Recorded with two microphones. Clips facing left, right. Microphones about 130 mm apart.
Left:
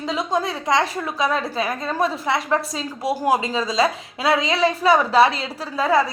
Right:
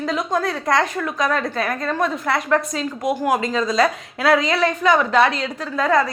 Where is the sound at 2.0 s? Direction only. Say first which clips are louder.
Left 1 dB; 30° left (ahead or behind).